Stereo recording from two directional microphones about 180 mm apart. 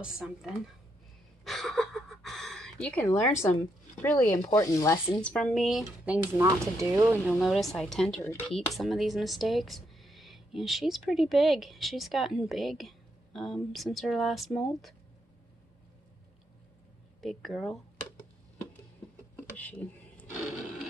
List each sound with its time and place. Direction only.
0.0 s speech: centre (ahead or behind)
1.4 s a sound: centre (ahead or behind)
4.0 s speech: 15° left (ahead or behind)
5.2 s speech: 5° left (ahead or behind); by 7.3 s 15° right (ahead or behind)
7.3 s speech: centre (ahead or behind)
17.2 s speech: centre (ahead or behind)
19.5 s a sound: 10° left (ahead or behind)